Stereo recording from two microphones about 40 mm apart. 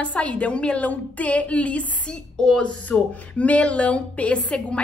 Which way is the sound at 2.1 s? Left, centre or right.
Centre.